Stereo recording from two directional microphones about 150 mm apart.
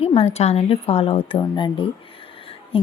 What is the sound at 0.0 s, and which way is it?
Speech, 40° left (ahead or behind).